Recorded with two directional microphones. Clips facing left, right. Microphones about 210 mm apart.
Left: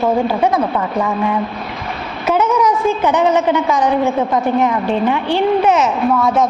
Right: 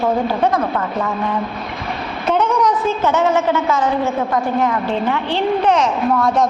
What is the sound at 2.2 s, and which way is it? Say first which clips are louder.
A woman's voice: left 2 dB; 5° left (ahead or behind).